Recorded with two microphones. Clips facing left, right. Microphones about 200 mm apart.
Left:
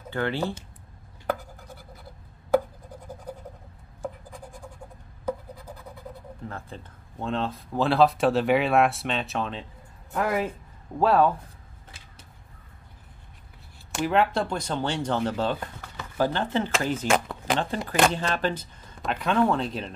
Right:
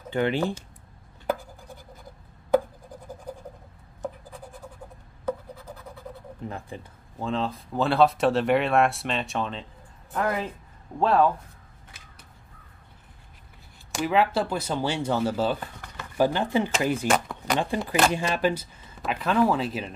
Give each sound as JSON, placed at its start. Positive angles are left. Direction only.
{"t": 0.1, "sound": "speech", "side_deg": -15}
{"t": 5.3, "sound": "scratch", "side_deg": 10}
{"t": 6.4, "sound": "speech", "side_deg": -15}
{"t": 7.2, "sound": "speech", "side_deg": 0}
{"t": 10.1, "sound": "speech", "side_deg": 10}
{"t": 13.9, "sound": "speech", "side_deg": 0}